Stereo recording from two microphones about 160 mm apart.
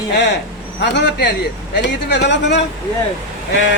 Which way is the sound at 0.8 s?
90° left.